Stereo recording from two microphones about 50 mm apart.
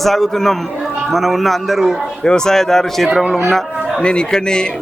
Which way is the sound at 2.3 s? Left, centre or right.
Centre.